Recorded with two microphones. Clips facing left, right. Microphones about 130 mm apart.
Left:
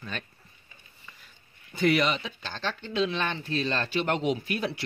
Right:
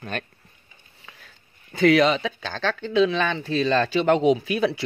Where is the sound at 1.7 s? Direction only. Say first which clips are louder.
Right 7 dB; 90° right.